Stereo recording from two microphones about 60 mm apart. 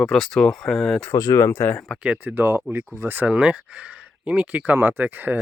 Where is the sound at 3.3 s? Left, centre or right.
Centre.